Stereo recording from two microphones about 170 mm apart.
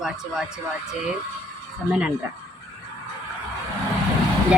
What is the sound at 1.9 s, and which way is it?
Speech, 5° right (ahead or behind).